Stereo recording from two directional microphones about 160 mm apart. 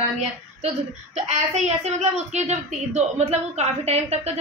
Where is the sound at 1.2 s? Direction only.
45° right (ahead or behind).